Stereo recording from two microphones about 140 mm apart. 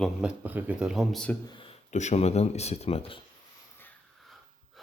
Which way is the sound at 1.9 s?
55° left (ahead or behind).